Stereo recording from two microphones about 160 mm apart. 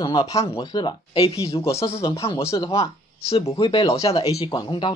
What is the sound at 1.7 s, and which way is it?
Speech, 15° left (ahead or behind).